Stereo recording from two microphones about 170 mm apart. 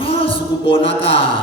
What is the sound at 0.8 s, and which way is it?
Speech, 30° left (ahead or behind).